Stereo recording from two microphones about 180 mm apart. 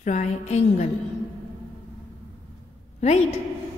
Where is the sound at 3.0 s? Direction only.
35° left (ahead or behind).